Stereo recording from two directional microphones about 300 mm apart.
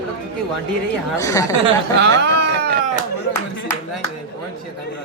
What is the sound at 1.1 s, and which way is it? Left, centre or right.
Speech, centre.